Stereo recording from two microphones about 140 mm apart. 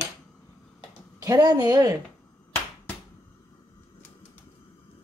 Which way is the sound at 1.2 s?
30° right (ahead or behind).